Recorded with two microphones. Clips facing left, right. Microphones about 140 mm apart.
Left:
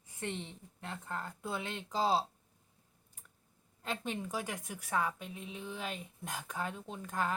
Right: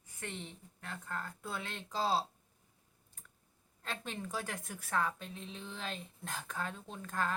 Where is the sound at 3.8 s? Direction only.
15° left (ahead or behind).